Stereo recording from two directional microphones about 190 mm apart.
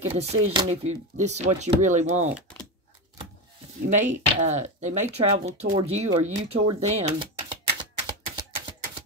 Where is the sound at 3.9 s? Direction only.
40° right (ahead or behind).